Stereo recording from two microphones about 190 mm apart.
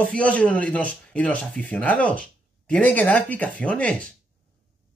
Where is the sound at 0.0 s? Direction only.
5° left (ahead or behind).